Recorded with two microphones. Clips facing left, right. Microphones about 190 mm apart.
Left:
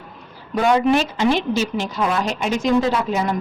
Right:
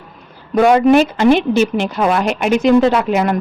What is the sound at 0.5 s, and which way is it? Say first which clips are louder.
A woman's voice: right 7 dB; 60° right (ahead or behind).